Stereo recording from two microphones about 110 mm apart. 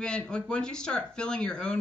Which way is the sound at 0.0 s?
10° left (ahead or behind).